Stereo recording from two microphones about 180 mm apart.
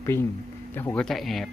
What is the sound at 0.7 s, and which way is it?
Speech, 10° left (ahead or behind).